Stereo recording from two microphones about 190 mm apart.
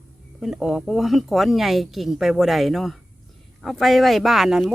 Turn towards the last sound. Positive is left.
turn(degrees=0)  # may be behind; listen again after turning